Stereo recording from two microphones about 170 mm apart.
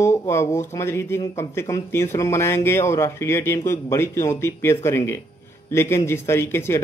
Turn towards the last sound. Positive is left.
turn(degrees=15)  # may be behind; listen again after turning